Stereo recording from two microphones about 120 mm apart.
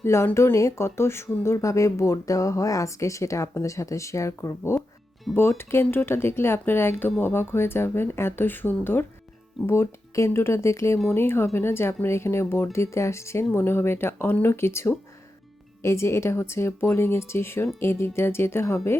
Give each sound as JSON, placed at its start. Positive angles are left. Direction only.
{"t": 0.0, "sound": "speech", "side_deg": 20}